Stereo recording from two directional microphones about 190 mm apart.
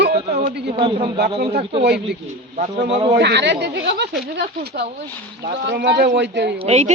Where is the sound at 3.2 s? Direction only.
65° right (ahead or behind).